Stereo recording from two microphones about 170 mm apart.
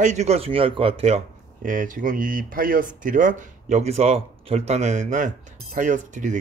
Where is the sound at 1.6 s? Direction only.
50° right (ahead or behind).